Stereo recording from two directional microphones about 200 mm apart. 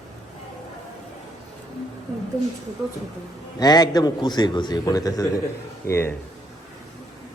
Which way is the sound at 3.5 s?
20° left (ahead or behind).